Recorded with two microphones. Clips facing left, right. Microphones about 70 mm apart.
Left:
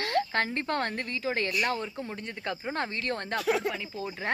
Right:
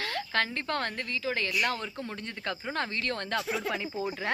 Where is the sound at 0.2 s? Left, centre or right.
Left.